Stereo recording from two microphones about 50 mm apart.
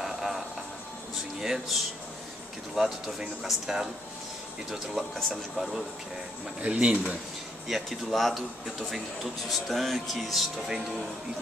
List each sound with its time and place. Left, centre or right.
0.0 s music: centre
1.4 s speech: centre
6.6 s speech: right
7.6 s speech: centre